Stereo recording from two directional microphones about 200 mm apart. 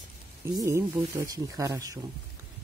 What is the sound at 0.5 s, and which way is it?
Speech, 15° right (ahead or behind).